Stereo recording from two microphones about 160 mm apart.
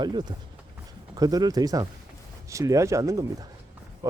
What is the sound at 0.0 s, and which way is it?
Speech, 25° right (ahead or behind).